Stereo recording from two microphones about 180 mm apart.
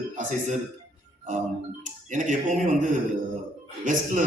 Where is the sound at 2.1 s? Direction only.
45° right (ahead or behind).